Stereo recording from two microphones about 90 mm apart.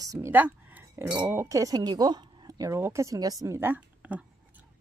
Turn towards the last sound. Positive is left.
turn(degrees=-20)  # may be behind; listen again after turning